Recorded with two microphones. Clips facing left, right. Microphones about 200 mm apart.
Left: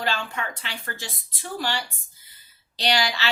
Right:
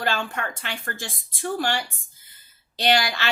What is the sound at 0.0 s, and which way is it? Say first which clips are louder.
A woman's voice: right 2 dB; 50° right (ahead or behind).